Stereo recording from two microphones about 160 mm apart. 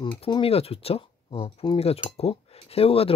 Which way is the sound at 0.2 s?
35° left (ahead or behind).